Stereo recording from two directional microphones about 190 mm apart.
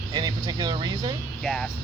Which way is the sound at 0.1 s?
20° right (ahead or behind).